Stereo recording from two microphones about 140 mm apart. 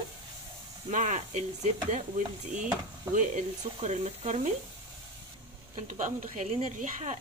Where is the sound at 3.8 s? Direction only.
55° right (ahead or behind).